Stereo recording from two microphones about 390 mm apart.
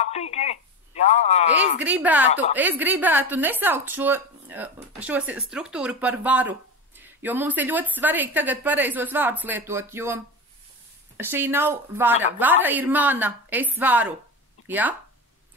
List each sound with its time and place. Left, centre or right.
0.0 s speech: centre
1.8 s a woman's voice: centre